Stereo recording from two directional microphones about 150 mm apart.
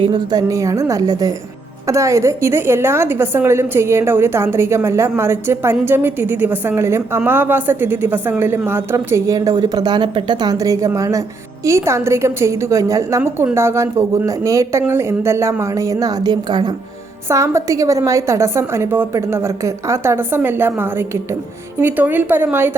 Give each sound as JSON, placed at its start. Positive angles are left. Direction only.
{"t": 0.0, "sound": "a woman's voice", "side_deg": -30}